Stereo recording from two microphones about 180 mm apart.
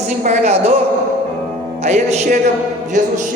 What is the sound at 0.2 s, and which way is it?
Speech, 40° right (ahead or behind).